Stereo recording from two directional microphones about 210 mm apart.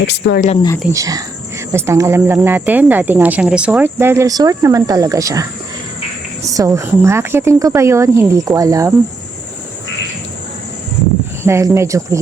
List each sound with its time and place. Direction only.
0.1 s speech: 55° left (ahead or behind)
0.9 s speech: 15° right (ahead or behind)
11.4 s speech: 10° right (ahead or behind)